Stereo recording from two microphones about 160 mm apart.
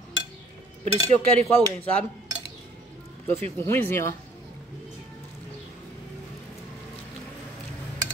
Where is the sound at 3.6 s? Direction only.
15° left (ahead or behind).